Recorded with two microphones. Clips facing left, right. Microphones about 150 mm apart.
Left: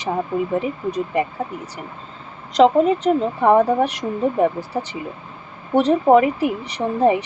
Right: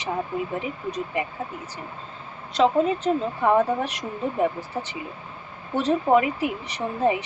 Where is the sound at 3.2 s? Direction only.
30° left (ahead or behind).